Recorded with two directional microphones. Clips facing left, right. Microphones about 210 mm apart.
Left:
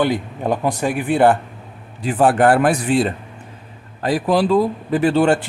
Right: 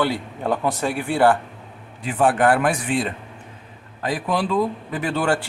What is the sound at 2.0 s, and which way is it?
Speech, 35° left (ahead or behind).